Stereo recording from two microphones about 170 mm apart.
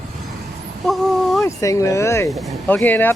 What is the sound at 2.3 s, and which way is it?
Speech, centre (ahead or behind).